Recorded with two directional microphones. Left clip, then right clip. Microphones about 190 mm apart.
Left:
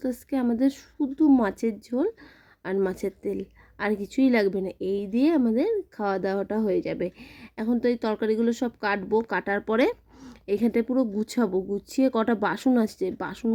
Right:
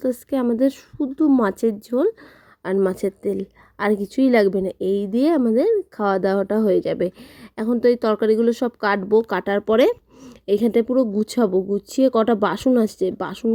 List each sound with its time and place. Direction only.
0.0 s speech: 20° right (ahead or behind)